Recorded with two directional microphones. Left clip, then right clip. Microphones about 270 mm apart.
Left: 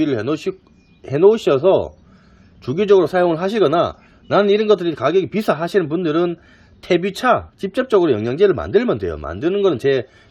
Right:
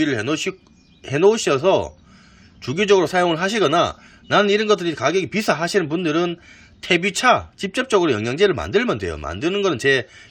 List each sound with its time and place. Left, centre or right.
0.0 s a man's voice: centre